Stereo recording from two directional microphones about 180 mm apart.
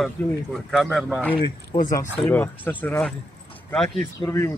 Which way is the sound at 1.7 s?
25° left (ahead or behind).